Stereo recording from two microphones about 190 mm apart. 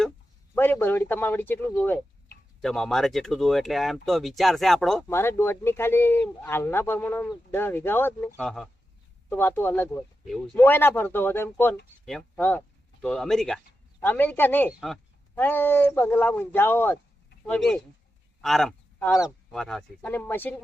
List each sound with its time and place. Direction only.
0.5 s speech: 10° left (ahead or behind)
5.0 s speech: 15° left (ahead or behind)